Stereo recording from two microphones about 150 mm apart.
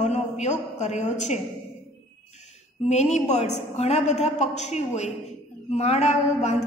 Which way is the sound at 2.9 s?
45° left (ahead or behind).